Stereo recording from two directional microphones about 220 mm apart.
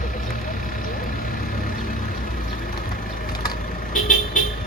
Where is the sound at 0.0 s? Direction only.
35° left (ahead or behind).